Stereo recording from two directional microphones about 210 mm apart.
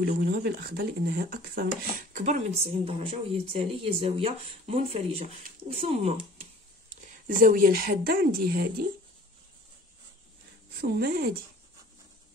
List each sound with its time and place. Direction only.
0.2 s speech: 50° right (ahead or behind); by 6.4 s 30° right (ahead or behind)
7.2 s speech: 40° right (ahead or behind)
10.8 s speech: 50° right (ahead or behind)